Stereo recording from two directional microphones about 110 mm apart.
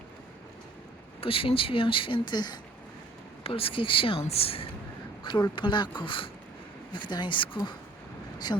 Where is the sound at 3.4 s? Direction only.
55° left (ahead or behind).